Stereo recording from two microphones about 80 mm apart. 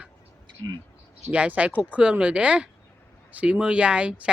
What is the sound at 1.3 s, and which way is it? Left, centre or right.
Speech, centre.